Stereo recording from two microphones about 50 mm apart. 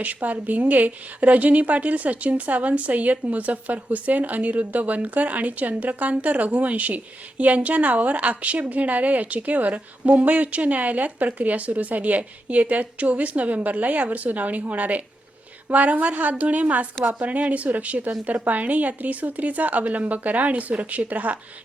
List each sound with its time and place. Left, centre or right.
0.0 s a woman's voice: right